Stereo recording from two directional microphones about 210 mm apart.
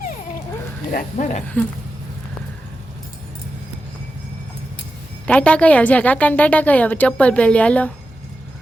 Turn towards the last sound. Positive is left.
turn(degrees=5)  # may be behind; listen again after turning